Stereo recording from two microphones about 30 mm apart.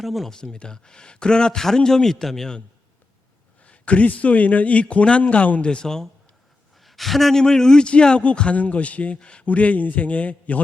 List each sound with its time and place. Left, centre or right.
0.0 s speech: centre
0.3 s speech: left
3.6 s a man's voice: left
5.6 s speech: left
6.7 s a sound: centre
7.3 s speech: centre
7.9 s a man's voice: left
9.1 s speech: left
9.5 s a man's voice: left